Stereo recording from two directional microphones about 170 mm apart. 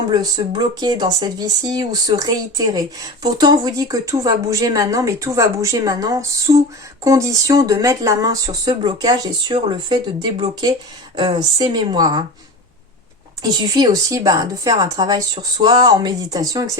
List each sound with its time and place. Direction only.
0.1 s speech: 25° right (ahead or behind)
13.4 s speech: 25° right (ahead or behind)